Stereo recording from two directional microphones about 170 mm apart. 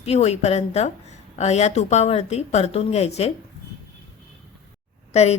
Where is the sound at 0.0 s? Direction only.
40° left (ahead or behind).